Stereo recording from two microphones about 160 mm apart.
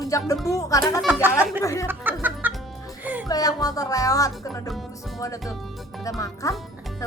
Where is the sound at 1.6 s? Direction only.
20° left (ahead or behind).